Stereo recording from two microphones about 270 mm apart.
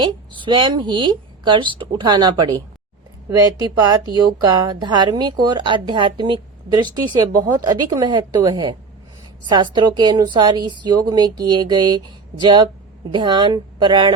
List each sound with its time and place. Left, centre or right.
0.0 s a woman's voice: centre